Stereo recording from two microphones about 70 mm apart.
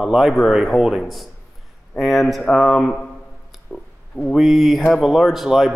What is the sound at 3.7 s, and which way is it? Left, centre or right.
Speech, centre.